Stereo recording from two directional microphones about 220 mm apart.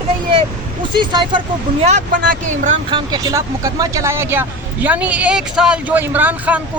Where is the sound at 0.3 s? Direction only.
20° right (ahead or behind).